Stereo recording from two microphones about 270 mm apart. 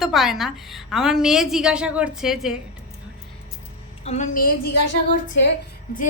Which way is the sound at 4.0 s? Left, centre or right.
Left.